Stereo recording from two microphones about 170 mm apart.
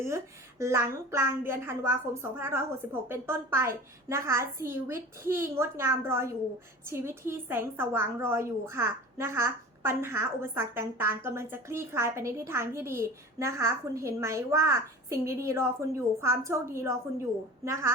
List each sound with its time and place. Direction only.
0.6 s a woman's voice: 15° right (ahead or behind)